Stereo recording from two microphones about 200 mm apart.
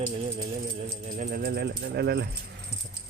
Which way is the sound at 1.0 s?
40° right (ahead or behind).